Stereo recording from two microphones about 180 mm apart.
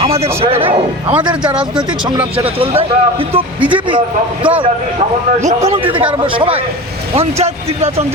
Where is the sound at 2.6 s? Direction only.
30° right (ahead or behind).